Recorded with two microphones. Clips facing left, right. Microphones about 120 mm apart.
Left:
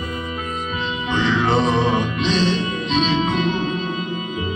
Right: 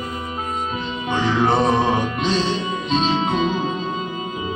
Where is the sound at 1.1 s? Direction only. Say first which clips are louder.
Even; 45° right (ahead or behind).